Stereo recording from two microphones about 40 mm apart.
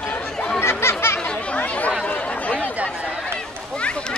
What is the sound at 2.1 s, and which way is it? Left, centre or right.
Chatter, left.